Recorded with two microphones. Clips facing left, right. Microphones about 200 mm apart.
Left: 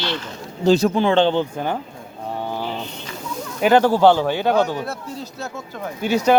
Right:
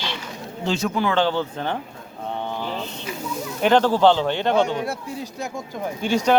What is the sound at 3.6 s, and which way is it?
Speech, 10° left (ahead or behind).